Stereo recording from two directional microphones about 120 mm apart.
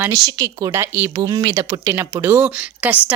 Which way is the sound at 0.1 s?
25° right (ahead or behind).